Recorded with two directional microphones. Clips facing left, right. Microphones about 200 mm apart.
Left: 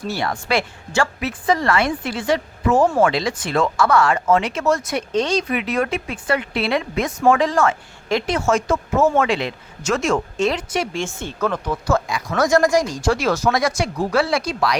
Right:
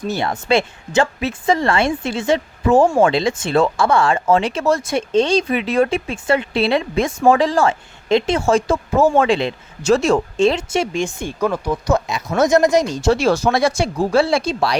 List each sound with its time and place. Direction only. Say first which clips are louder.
0.1 s speech: right 4 dB; 20° right (ahead or behind)